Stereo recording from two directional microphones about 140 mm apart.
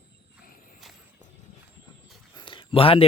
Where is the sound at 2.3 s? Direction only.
35° left (ahead or behind).